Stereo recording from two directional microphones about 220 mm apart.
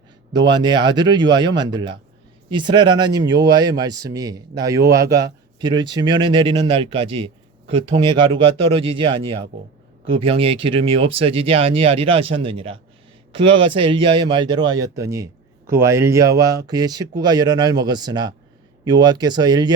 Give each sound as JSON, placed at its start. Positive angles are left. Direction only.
{"t": 0.3, "sound": "a man's voice", "side_deg": -20}